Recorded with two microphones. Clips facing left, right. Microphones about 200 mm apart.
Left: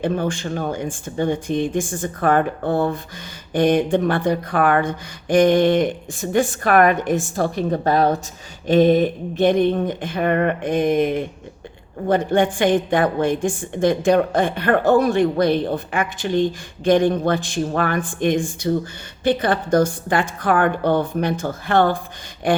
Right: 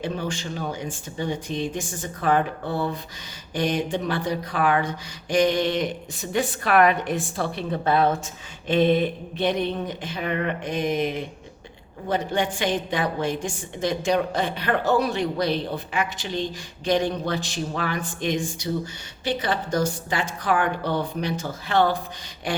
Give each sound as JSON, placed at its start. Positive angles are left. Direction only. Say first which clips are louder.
{"t": 0.0, "sound": "a woman's voice", "louder": "left 7 dB", "side_deg": 55}